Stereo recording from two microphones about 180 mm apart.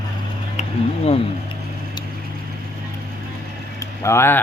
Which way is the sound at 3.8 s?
15° left (ahead or behind).